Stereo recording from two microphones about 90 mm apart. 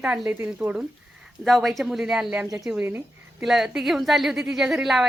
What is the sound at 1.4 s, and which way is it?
Speech, centre (ahead or behind).